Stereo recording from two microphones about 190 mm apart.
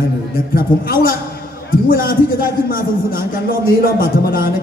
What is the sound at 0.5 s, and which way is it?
A man's voice, 50° left (ahead or behind).